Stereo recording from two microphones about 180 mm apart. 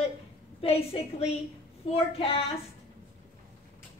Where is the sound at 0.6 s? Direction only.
35° left (ahead or behind).